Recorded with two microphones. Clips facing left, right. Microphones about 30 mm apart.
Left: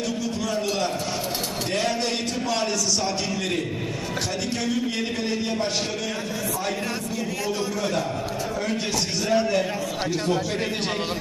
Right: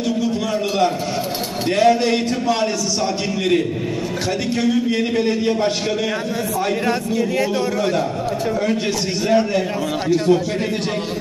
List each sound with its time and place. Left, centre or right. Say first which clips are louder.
1.8 s a man's voice: right 11 dB; centre
4.6 s a man's voice: right 9 dB; centre
9.3 s a man's voice: right 4 dB; centre